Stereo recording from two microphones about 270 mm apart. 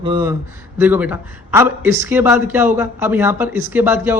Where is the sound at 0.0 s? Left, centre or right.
Centre.